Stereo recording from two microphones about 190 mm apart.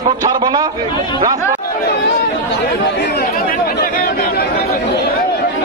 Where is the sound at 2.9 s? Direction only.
65° left (ahead or behind).